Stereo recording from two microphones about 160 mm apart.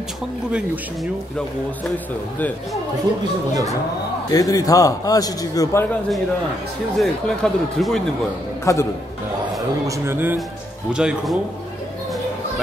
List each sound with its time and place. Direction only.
4.3 s a man's voice: 20° left (ahead or behind)
7.0 s speech: centre (ahead or behind)
8.7 s a man's voice: 20° left (ahead or behind)
9.8 s speech: 15° right (ahead or behind)